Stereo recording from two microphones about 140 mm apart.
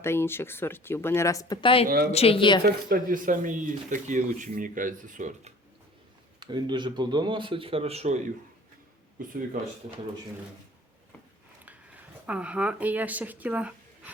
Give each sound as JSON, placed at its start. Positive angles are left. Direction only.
{"t": 0.0, "sound": "speech", "side_deg": 15}
{"t": 1.6, "sound": "a woman's voice", "side_deg": 40}
{"t": 2.9, "sound": "speech", "side_deg": -75}
{"t": 6.4, "sound": "speech", "side_deg": -35}
{"t": 9.1, "sound": "speech", "side_deg": -80}
{"t": 12.2, "sound": "speech", "side_deg": -10}